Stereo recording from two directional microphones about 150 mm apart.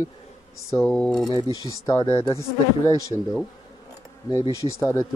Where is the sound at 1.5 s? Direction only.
25° left (ahead or behind).